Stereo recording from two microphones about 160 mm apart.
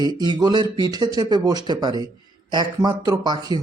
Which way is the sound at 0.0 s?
25° right (ahead or behind).